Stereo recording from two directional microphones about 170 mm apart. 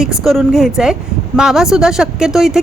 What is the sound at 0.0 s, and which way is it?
A woman's voice, 5° right (ahead or behind).